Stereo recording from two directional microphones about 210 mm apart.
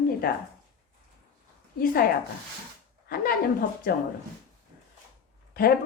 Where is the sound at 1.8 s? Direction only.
45° left (ahead or behind).